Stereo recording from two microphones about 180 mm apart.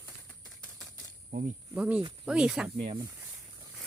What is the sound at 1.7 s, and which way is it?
Speech, 5° right (ahead or behind).